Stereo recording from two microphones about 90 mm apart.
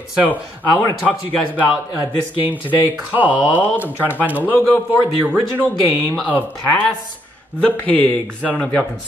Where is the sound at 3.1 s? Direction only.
15° right (ahead or behind).